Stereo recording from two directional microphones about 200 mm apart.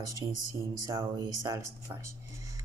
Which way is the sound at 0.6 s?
20° right (ahead or behind).